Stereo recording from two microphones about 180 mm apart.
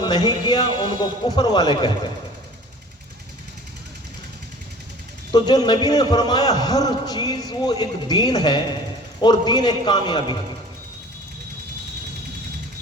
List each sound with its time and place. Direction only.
0.0 s a man's voice: 25° left (ahead or behind)
5.3 s a man's voice: 25° left (ahead or behind)